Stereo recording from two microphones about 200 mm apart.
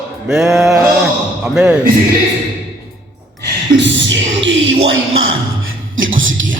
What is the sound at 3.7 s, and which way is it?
Music, 65° right (ahead or behind).